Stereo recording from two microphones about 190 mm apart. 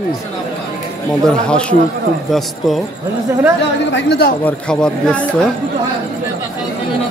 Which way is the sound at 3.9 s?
55° left (ahead or behind).